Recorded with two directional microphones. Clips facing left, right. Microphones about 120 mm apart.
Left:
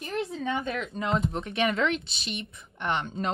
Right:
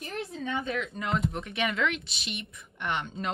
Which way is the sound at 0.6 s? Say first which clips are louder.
Even; 40° left (ahead or behind).